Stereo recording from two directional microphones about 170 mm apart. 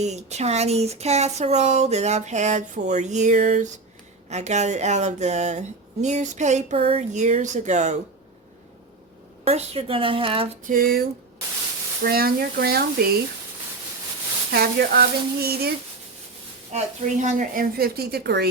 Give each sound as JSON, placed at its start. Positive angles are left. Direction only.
{"t": 0.0, "sound": "speech", "side_deg": -40}
{"t": 9.4, "sound": "speech", "side_deg": -35}
{"t": 10.6, "sound": "a woman's voice", "side_deg": -55}
{"t": 12.0, "sound": "a woman's voice", "side_deg": -60}
{"t": 14.5, "sound": "a woman's voice", "side_deg": -65}
{"t": 16.7, "sound": "a woman's voice", "side_deg": -45}